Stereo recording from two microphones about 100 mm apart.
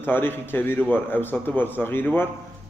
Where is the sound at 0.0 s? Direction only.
20° left (ahead or behind).